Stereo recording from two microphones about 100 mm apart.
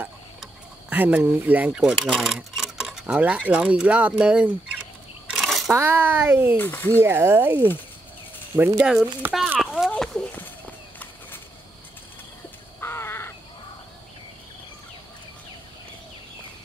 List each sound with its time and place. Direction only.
0.8 s speech: 15° right (ahead or behind)
1.7 s speech: 5° right (ahead or behind)
5.3 s a sound: centre (ahead or behind)
5.7 s speech: 20° right (ahead or behind)
6.5 s speech: 20° left (ahead or behind)
7.0 s speech: 25° right (ahead or behind)
8.8 s speech: 10° right (ahead or behind)
9.6 s a sound: 5° right (ahead or behind)
9.8 s a sound: 5° left (ahead or behind)
12.8 s crow: 25° left (ahead or behind)